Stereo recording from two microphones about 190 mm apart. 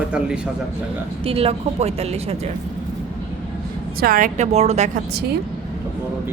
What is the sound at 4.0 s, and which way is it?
Speech, 45° right (ahead or behind).